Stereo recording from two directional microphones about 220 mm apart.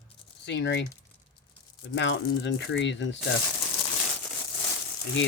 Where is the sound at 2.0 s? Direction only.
55° left (ahead or behind).